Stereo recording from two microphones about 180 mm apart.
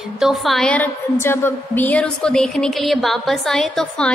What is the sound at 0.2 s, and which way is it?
A woman's voice, centre (ahead or behind).